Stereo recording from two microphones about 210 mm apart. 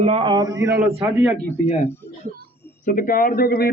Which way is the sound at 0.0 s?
25° right (ahead or behind).